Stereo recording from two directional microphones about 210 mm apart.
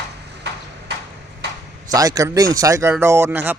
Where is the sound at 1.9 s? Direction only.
15° right (ahead or behind).